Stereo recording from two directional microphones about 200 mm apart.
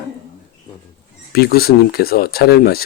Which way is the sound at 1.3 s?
50° left (ahead or behind).